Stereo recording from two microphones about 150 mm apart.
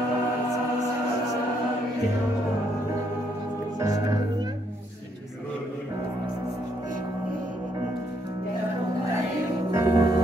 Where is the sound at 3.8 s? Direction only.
25° right (ahead or behind).